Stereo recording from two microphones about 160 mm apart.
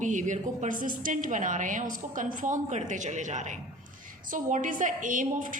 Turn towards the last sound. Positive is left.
turn(degrees=-55)  # may be behind; listen again after turning